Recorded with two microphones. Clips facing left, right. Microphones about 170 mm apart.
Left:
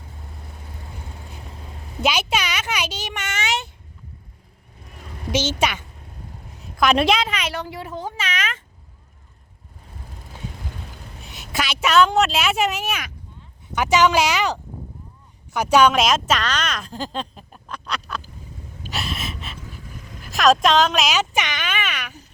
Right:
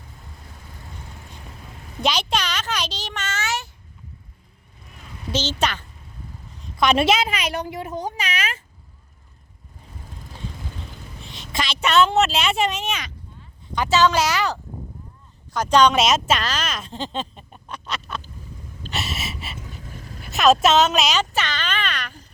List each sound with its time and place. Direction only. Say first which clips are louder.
2.0 s a sound: left 1 dB; 5° left (ahead or behind)
5.3 s a woman's voice: left 2 dB; 10° left (ahead or behind)
7.5 s speech: right 2 dB; 20° right (ahead or behind)
8.1 s speech: even; 35° right (ahead or behind)
11.2 s a woman's voice: left 1 dB; 5° left (ahead or behind)
18.9 s a sound: left 1 dB; centre (ahead or behind)
20.2 s speech: even; centre (ahead or behind)
21.2 s speech: left 1 dB; 15° left (ahead or behind)